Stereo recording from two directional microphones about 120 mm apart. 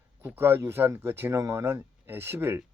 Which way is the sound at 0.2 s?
20° right (ahead or behind).